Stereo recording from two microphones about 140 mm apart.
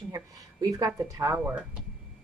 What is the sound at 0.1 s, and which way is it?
Speech, 25° right (ahead or behind).